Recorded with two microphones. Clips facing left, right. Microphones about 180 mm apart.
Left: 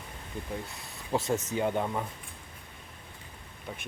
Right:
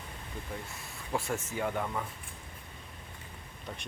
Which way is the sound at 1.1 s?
20° left (ahead or behind).